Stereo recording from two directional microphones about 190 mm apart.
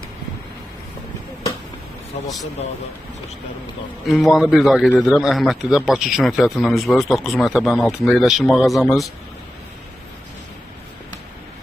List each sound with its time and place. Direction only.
2.1 s a man's voice: 35° left (ahead or behind)
4.0 s a man's voice: centre (ahead or behind)